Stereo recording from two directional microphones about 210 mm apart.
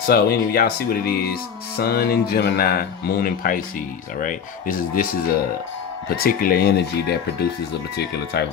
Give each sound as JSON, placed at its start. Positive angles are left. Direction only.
{"t": 0.1, "sound": "speech", "side_deg": 45}
{"t": 6.2, "sound": "speech", "side_deg": 45}